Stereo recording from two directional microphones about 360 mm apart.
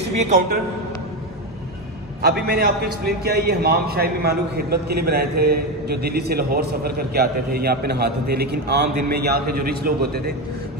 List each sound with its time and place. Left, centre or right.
0.2 s a man's voice: right
2.2 s a man's voice: right